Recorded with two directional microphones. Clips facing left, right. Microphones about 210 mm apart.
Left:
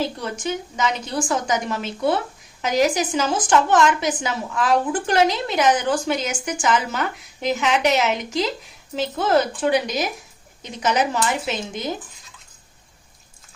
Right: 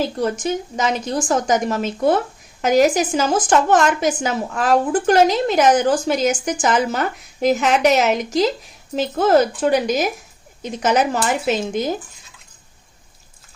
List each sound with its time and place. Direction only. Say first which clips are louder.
0.3 s a woman's voice: right 5 dB; 40° right (ahead or behind)